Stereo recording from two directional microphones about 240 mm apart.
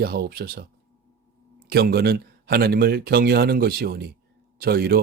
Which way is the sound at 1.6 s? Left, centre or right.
Right.